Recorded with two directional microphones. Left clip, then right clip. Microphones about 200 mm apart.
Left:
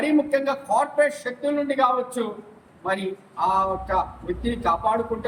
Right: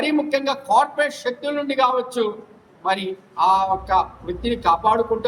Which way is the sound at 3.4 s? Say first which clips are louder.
Right 4 dB; 20° right (ahead or behind).